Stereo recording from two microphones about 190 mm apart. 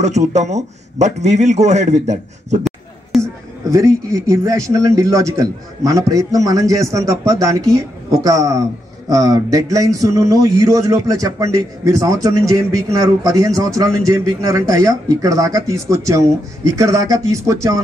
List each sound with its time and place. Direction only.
0.0 s speech: 35° right (ahead or behind)
3.1 s a sound: centre (ahead or behind)
3.7 s speech: 15° right (ahead or behind)